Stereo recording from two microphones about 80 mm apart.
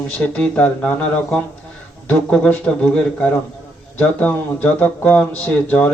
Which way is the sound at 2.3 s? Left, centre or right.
Centre.